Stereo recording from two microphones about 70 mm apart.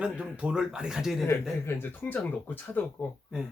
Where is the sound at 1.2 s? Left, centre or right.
Left.